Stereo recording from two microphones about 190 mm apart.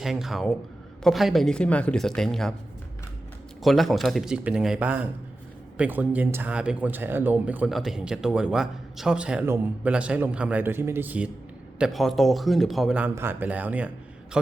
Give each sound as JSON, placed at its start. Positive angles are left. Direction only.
{"t": 0.0, "sound": "speech", "side_deg": 0}
{"t": 3.6, "sound": "speech", "side_deg": 0}